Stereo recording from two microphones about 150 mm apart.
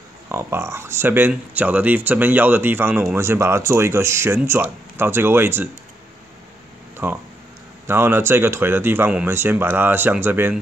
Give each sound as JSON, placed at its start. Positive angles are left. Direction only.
{"t": 0.3, "sound": "speech", "side_deg": -15}
{"t": 7.0, "sound": "speech", "side_deg": -15}